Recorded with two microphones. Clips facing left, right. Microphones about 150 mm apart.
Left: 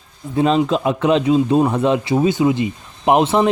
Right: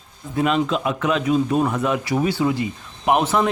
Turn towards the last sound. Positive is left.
turn(degrees=25)  # may be behind; listen again after turning